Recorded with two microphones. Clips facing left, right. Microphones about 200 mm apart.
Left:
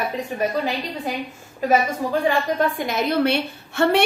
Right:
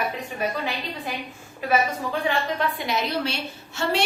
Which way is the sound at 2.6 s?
45° left (ahead or behind).